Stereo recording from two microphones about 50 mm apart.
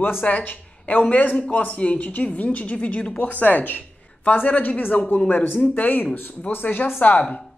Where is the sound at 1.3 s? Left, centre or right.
Centre; by 6.9 s left.